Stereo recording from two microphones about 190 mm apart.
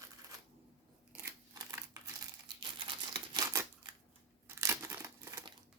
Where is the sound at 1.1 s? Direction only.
15° right (ahead or behind).